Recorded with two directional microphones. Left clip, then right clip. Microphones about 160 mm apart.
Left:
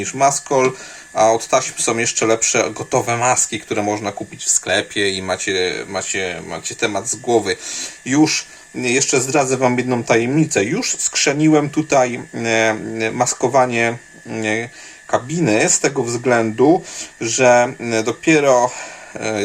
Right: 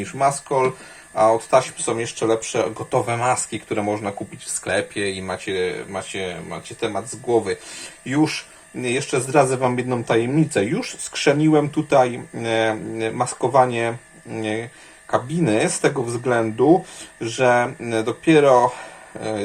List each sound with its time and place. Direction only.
0.0 s speech: 20° left (ahead or behind)
2.9 s speech: 15° left (ahead or behind); by 7.6 s 30° left (ahead or behind)
8.0 s speech: 20° left (ahead or behind)